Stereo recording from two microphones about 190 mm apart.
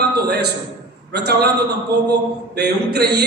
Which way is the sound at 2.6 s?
60° right (ahead or behind).